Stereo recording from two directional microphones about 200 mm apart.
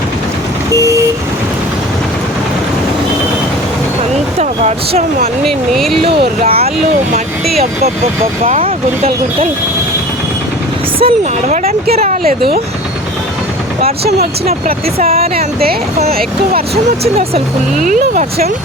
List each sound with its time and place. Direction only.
0.7 s vehicle: 15° right (ahead or behind)
4.4 s speech: 30° right (ahead or behind)
5.5 s speech: centre (ahead or behind)
6.0 s speech: 25° right (ahead or behind)
8.4 s speech: 30° right (ahead or behind)
11.0 s speech: 35° right (ahead or behind); by 12.5 s 50° right (ahead or behind)
14.9 s speech: 30° right (ahead or behind)
16.0 s speech: 50° right (ahead or behind)
17.0 s speech: 30° right (ahead or behind)
17.8 s speech: 40° right (ahead or behind)